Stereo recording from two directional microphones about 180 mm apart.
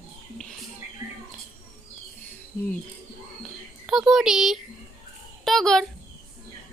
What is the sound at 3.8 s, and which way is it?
Speech, centre (ahead or behind).